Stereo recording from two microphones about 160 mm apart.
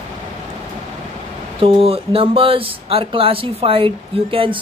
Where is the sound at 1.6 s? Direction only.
35° right (ahead or behind).